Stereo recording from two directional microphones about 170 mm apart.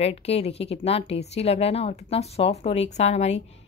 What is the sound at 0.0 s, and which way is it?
A woman's voice, 35° left (ahead or behind).